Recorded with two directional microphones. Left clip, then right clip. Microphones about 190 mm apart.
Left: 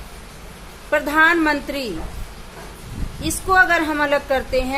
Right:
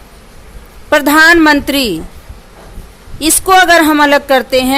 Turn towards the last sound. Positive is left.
turn(degrees=-55)  # may be behind; listen again after turning